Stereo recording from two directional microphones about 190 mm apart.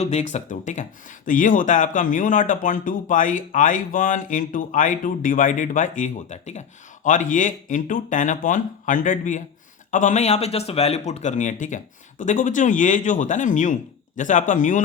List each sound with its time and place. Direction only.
0.0 s speech: 35° left (ahead or behind)